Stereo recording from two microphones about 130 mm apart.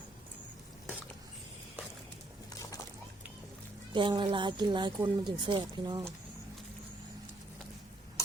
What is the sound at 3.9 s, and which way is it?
Speech, 40° right (ahead or behind).